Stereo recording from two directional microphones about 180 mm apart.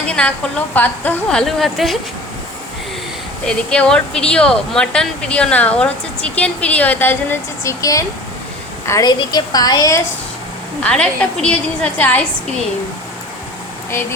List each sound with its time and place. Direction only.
0.1 s a woman's voice: 5° left (ahead or behind)
3.4 s a woman's voice: 5° left (ahead or behind); by 10.0 s 20° left (ahead or behind)
10.8 s speech: 5° left (ahead or behind)